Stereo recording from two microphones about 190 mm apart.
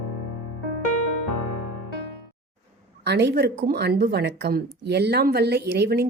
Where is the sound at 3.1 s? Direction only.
65° right (ahead or behind).